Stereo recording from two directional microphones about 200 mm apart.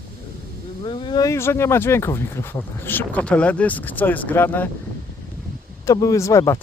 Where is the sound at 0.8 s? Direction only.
25° left (ahead or behind).